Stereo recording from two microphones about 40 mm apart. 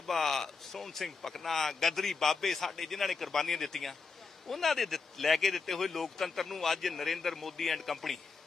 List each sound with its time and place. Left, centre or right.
0.1 s speech: centre